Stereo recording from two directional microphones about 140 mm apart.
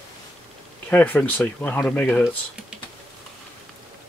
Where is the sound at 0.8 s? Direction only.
15° left (ahead or behind).